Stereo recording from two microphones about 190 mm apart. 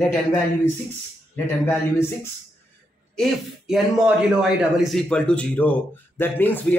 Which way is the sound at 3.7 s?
5° right (ahead or behind).